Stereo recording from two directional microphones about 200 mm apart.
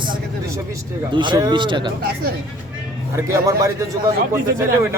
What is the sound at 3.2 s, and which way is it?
Speech, 15° right (ahead or behind).